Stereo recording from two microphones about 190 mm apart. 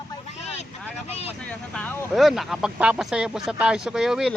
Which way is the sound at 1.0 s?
35° left (ahead or behind).